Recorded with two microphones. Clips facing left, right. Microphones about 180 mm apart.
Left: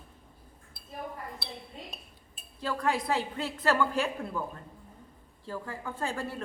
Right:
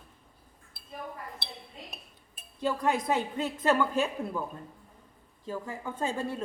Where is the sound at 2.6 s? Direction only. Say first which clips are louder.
Right 2 dB; 20° right (ahead or behind).